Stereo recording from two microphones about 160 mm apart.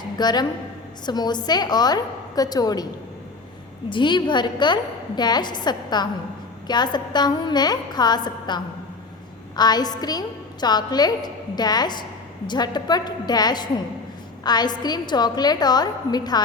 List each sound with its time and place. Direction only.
0.2 s a woman's voice: 25° left (ahead or behind)
3.8 s a woman's voice: 30° left (ahead or behind)